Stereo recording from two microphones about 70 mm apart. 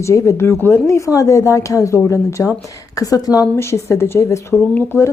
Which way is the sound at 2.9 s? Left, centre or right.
Left.